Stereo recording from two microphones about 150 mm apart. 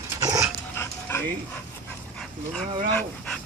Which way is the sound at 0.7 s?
20° left (ahead or behind).